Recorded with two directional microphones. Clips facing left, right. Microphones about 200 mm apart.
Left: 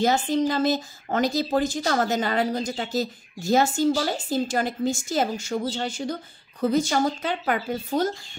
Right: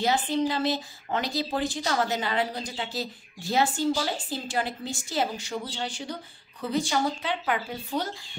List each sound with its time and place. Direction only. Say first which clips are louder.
0.0 s speech: left 4 dB; 45° left (ahead or behind)